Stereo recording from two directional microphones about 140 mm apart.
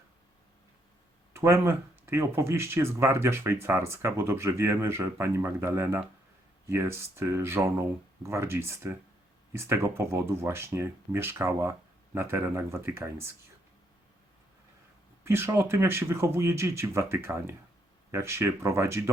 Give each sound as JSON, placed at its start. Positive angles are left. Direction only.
{"t": 1.3, "sound": "speech", "side_deg": -20}
{"t": 15.2, "sound": "speech", "side_deg": -15}